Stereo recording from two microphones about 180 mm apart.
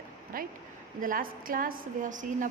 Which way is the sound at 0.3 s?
55° right (ahead or behind).